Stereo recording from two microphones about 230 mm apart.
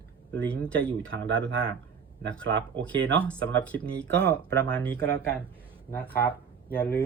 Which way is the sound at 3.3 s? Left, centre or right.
Centre.